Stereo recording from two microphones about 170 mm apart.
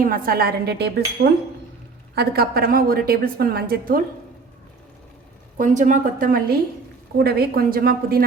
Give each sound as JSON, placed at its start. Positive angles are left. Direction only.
{"t": 0.0, "sound": "a woman's voice", "side_deg": -55}
{"t": 5.5, "sound": "a woman's voice", "side_deg": -50}